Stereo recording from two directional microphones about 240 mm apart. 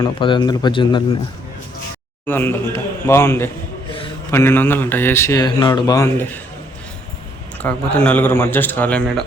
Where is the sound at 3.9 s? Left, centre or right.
Left.